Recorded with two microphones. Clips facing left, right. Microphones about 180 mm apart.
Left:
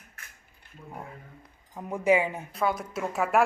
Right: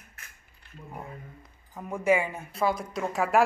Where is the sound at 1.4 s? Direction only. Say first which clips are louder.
Left 1 dB; 15° left (ahead or behind).